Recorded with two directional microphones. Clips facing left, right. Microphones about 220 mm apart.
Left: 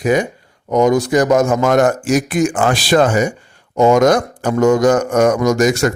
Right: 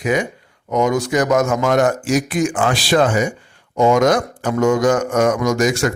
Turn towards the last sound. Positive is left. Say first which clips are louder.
# left 3 dB
turn(degrees=40)  # may be behind; listen again after turning